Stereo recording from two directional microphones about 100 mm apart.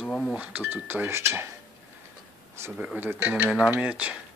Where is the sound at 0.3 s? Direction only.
15° right (ahead or behind).